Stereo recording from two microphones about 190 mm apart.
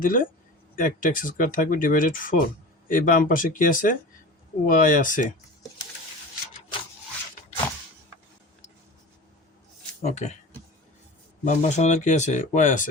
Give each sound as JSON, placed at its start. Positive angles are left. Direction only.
{"t": 0.0, "sound": "speech", "side_deg": 45}
{"t": 10.0, "sound": "speech", "side_deg": 35}
{"t": 11.4, "sound": "speech", "side_deg": 40}